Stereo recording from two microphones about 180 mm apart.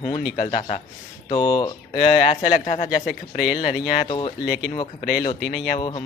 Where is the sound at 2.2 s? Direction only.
45° left (ahead or behind).